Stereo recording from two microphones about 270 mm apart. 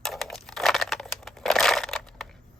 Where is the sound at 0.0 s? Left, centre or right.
Centre.